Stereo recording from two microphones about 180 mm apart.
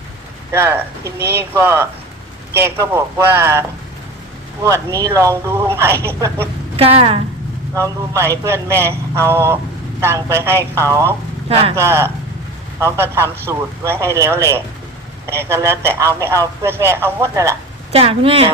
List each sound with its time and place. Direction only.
0.5 s speech: 15° right (ahead or behind)
1.2 s speech: 65° right (ahead or behind)
1.6 s speech: 15° right (ahead or behind)
4.9 s speech: 15° right (ahead or behind)
6.7 s speech: 30° right (ahead or behind)
8.1 s speech: 15° right (ahead or behind)
11.4 s speech: 35° right (ahead or behind)
11.7 s speech: 15° right (ahead or behind)
17.9 s speech: 35° right (ahead or behind)